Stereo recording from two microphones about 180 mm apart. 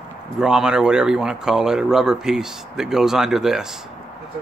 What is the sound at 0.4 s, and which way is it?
Speech, 5° right (ahead or behind).